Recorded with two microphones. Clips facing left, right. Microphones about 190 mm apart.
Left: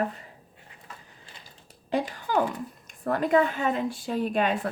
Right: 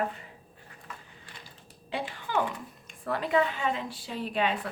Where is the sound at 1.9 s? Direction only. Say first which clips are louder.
Left 6 dB; 40° left (ahead or behind).